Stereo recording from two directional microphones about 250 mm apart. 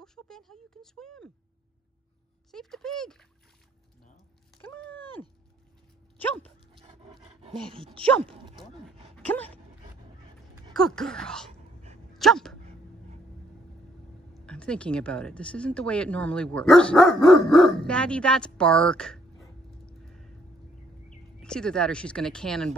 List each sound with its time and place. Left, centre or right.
0.0 s speech: centre
2.5 s speech: centre
4.6 s speech: centre
6.4 s dog: right
7.7 s speech: right
8.5 s a sound: centre
9.1 s dog: centre
10.5 s speech: centre
12.1 s dog: centre
14.4 s speech: centre
19.9 s a sound: centre
21.4 s speech: centre